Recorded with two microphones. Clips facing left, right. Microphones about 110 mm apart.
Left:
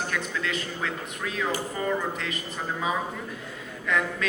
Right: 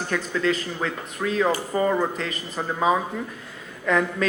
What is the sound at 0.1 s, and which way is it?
A man's voice, 40° right (ahead or behind).